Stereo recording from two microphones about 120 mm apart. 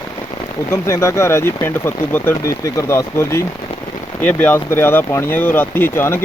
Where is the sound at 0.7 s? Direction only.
25° left (ahead or behind).